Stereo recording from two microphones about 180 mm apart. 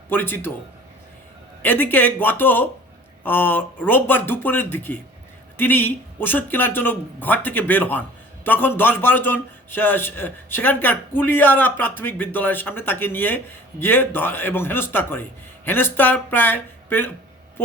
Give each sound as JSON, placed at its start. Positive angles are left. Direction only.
{"t": 0.1, "sound": "a man's voice", "side_deg": 10}
{"t": 1.6, "sound": "a man's voice", "side_deg": 10}